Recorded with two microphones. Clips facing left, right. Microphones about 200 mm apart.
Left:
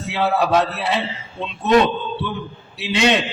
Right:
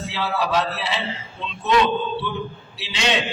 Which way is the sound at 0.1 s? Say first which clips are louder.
Left 6 dB; 55° left (ahead or behind).